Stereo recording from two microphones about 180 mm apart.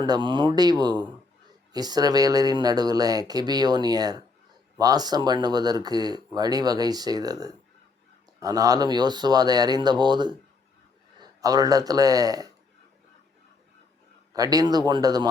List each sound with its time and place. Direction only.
0.0 s speech: 25° right (ahead or behind)
14.3 s speech: 20° right (ahead or behind)